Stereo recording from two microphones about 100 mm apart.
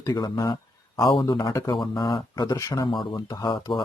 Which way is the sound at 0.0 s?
40° left (ahead or behind).